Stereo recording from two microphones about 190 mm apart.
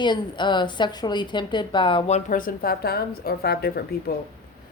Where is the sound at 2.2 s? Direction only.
45° left (ahead or behind).